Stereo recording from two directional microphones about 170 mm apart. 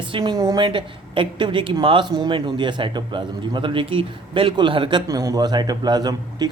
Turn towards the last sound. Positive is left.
turn(degrees=-25)  # may be behind; listen again after turning